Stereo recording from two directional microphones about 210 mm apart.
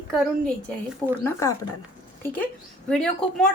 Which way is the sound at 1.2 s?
15° left (ahead or behind).